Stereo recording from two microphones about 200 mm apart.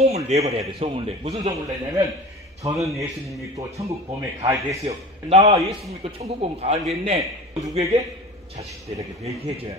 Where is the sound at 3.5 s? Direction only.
15° right (ahead or behind).